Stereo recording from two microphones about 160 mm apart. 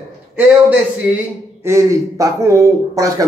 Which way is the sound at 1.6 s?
20° right (ahead or behind).